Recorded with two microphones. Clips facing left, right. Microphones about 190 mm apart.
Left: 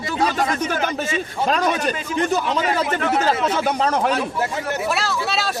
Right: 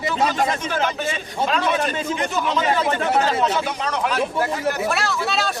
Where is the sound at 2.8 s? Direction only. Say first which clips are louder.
Right 1 dB; 30° right (ahead or behind).